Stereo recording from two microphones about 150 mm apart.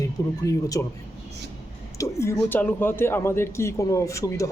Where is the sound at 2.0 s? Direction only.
20° left (ahead or behind).